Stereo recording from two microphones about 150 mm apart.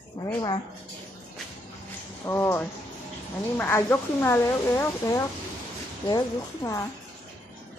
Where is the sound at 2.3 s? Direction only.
20° left (ahead or behind).